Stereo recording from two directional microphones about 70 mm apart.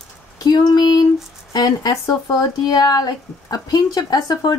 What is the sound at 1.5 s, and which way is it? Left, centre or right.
Speech, left.